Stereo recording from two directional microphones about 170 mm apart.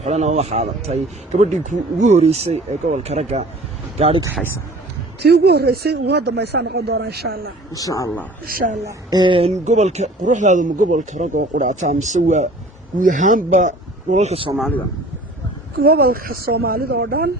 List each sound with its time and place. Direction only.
0.0 s speech: 40° right (ahead or behind)
5.2 s speech: 70° right (ahead or behind)
7.7 s speech: 20° left (ahead or behind)
8.4 s speech: 60° right (ahead or behind)
8.9 s speech: 25° right (ahead or behind)
15.7 s speech: 65° right (ahead or behind)